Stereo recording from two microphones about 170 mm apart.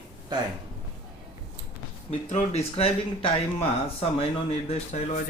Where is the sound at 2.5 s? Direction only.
35° left (ahead or behind).